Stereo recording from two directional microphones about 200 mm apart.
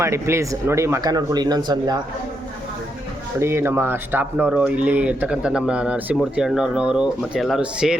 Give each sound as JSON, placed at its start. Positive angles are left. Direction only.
{"t": 0.0, "sound": "speech", "side_deg": -15}
{"t": 3.4, "sound": "speech", "side_deg": -10}